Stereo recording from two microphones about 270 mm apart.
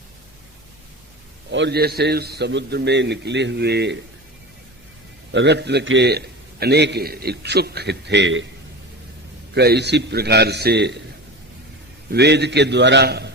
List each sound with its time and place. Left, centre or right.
1.5 s a man's voice: right
5.3 s a man's voice: right
9.6 s a man's voice: right
12.1 s a man's voice: right